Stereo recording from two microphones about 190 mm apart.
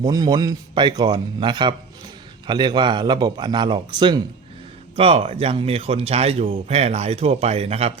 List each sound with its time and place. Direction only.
0.0 s a man's voice: 20° right (ahead or behind)